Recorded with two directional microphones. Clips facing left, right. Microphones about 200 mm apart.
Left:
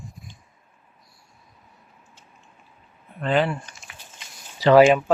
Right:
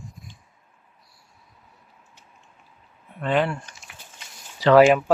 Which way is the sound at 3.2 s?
Centre (ahead or behind).